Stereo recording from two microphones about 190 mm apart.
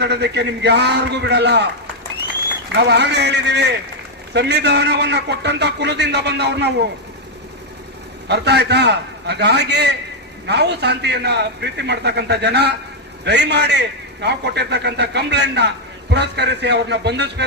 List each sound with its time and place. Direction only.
0.0 s a man's voice: 60° right (ahead or behind)
2.7 s a man's voice: 60° right (ahead or behind)
8.3 s a man's voice: 60° right (ahead or behind)